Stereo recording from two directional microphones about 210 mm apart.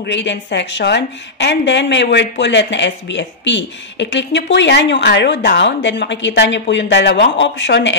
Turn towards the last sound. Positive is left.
turn(degrees=55)  # may be behind; listen again after turning